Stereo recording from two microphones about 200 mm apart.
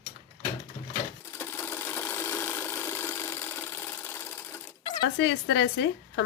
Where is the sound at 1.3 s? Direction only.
10° left (ahead or behind).